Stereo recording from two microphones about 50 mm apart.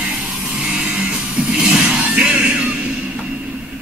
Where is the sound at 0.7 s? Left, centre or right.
Centre.